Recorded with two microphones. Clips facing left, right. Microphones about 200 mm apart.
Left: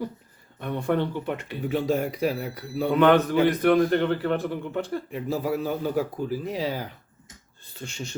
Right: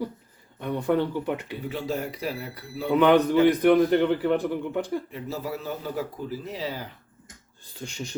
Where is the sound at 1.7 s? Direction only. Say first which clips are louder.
Left 6 dB; 15° left (ahead or behind).